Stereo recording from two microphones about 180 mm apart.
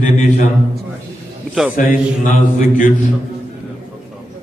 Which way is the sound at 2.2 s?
45° left (ahead or behind).